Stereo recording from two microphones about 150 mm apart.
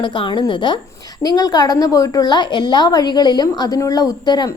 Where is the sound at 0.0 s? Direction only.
35° left (ahead or behind).